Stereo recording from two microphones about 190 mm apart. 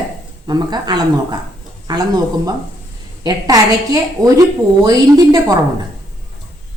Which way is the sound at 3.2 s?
20° right (ahead or behind).